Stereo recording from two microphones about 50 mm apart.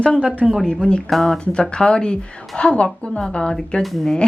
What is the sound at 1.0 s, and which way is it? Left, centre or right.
Speech, centre.